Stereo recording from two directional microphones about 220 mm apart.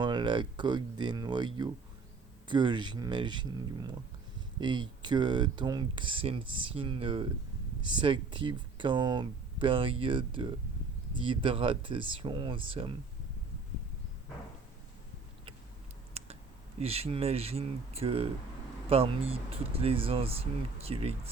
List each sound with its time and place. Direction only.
0.0 s speech: 20° right (ahead or behind)
2.5 s speech: 20° right (ahead or behind)
16.1 s clicking: 30° right (ahead or behind)
16.8 s speech: 25° right (ahead or behind)